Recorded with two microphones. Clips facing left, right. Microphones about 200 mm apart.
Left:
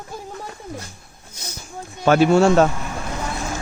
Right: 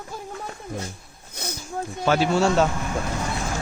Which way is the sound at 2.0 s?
55° left (ahead or behind).